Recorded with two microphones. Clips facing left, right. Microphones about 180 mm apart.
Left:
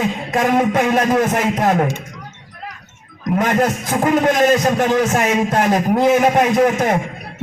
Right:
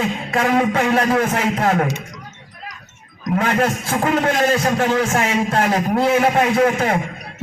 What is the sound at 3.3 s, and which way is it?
A man's voice, 20° left (ahead or behind).